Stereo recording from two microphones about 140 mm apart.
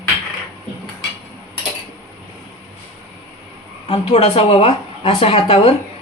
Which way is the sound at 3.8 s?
45° left (ahead or behind).